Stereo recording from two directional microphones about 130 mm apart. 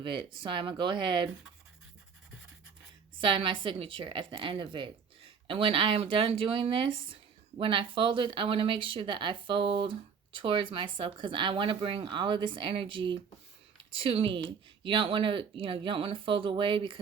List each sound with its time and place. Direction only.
0.0 s speech: 40° right (ahead or behind)
3.2 s speech: 40° right (ahead or behind)